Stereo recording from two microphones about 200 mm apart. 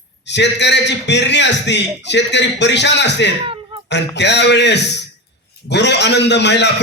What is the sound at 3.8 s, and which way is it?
A man's voice, 60° left (ahead or behind).